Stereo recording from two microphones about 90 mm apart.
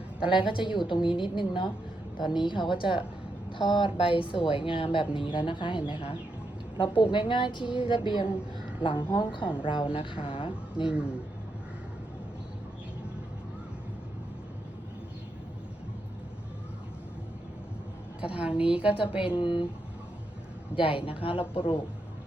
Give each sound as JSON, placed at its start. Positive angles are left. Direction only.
{"t": 0.4, "sound": "a woman's voice", "side_deg": 65}
{"t": 6.7, "sound": "a woman's voice", "side_deg": 65}
{"t": 10.8, "sound": "a man's voice", "side_deg": -10}
{"t": 18.3, "sound": "a man's voice", "side_deg": -10}
{"t": 18.9, "sound": "a woman's voice", "side_deg": 85}
{"t": 20.7, "sound": "a woman's voice", "side_deg": 75}
{"t": 21.5, "sound": "a woman's voice", "side_deg": 80}